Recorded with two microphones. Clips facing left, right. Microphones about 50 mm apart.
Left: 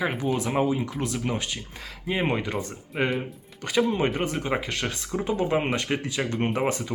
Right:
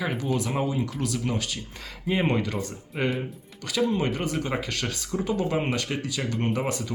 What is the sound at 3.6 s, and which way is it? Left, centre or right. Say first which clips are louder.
Speech: left 2 dB; left.